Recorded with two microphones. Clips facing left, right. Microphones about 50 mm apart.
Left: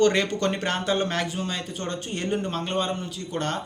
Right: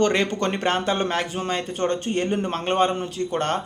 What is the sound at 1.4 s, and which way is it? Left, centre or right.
A man's voice, right.